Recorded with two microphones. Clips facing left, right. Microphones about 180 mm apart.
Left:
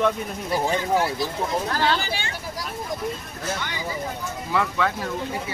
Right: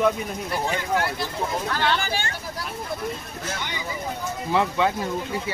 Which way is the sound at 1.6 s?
35° left (ahead or behind).